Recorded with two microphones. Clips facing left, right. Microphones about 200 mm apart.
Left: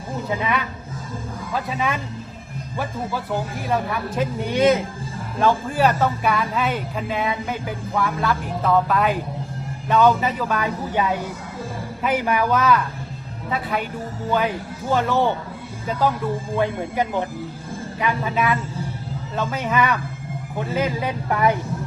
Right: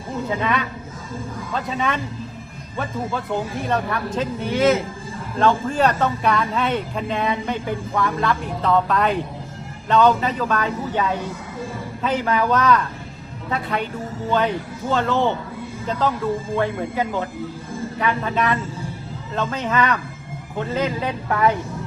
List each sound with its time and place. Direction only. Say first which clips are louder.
1.5 s a man's voice: even; 5° left (ahead or behind)
3.6 s a man's voice: right 1 dB; 5° left (ahead or behind)